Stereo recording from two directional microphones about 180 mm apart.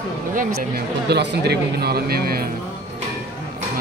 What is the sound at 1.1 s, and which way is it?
Speech, 65° right (ahead or behind).